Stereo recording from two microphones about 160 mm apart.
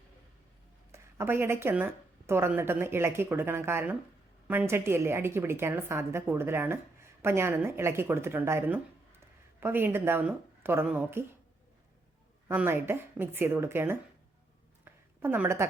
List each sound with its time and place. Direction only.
0.9 s a woman's voice: 15° right (ahead or behind)
12.5 s a woman's voice: 15° right (ahead or behind)
14.8 s a sound: 15° right (ahead or behind)